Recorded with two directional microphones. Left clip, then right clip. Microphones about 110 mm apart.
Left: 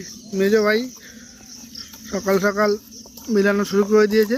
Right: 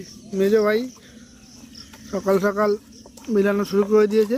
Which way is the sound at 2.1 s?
5° right (ahead or behind).